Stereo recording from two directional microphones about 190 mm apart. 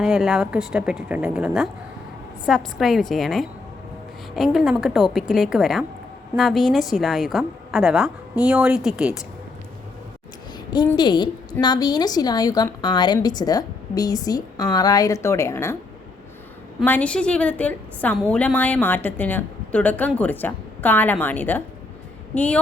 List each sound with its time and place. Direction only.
0.0 s a woman's voice: 5° right (ahead or behind)
10.9 s a woman's voice: 25° left (ahead or behind)
16.8 s a woman's voice: 10° left (ahead or behind)